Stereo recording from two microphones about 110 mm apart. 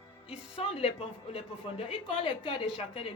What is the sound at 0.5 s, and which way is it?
A woman's voice, 60° left (ahead or behind).